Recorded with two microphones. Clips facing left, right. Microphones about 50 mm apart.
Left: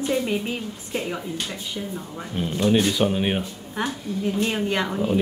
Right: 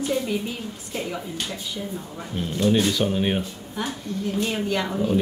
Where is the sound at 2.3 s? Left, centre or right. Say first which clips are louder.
Left 1 dB; centre.